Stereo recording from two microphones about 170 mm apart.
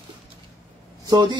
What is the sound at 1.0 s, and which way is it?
Speech, 25° right (ahead or behind).